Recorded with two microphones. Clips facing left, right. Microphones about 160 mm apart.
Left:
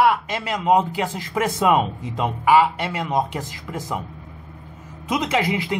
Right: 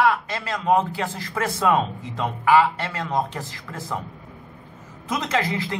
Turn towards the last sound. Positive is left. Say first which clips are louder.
# left 3 dB
turn(degrees=15)  # may be behind; listen again after turning